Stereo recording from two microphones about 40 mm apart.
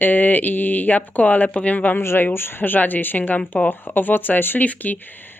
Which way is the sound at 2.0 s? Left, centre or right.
Left.